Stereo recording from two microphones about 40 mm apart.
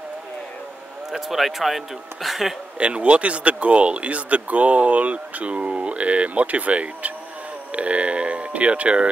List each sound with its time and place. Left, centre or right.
1.3 s speech: centre
2.8 s speech: right